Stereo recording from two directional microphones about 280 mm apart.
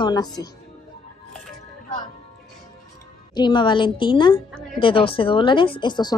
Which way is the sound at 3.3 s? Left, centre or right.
Centre.